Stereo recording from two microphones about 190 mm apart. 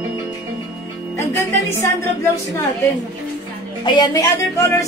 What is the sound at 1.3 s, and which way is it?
Speech, 15° left (ahead or behind).